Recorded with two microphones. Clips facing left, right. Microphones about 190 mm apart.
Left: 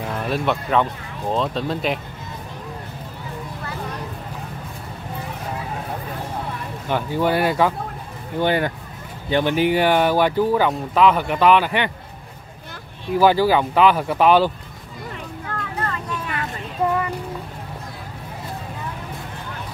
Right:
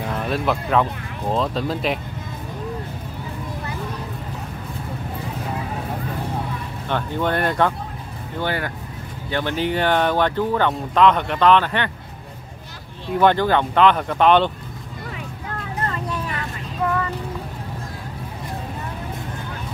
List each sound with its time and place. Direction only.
0.0 s speech: centre (ahead or behind)
6.9 s speech: 10° left (ahead or behind)
8.4 s speech: 20° left (ahead or behind)
13.1 s speech: 5° left (ahead or behind)